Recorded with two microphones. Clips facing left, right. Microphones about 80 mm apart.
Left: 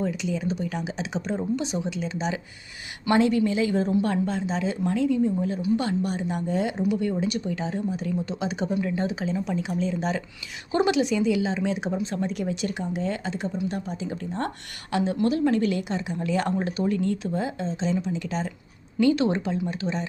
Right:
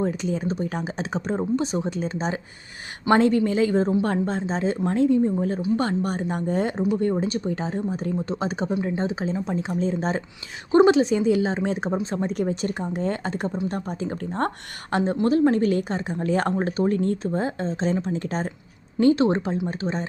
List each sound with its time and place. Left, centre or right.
0.0 s a woman's voice: right